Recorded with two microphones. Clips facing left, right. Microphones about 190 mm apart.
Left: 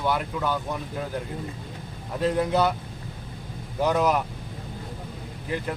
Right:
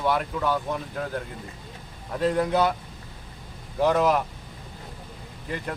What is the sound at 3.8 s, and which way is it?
Speech, centre (ahead or behind).